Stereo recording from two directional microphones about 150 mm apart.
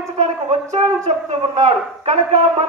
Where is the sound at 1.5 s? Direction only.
45° right (ahead or behind).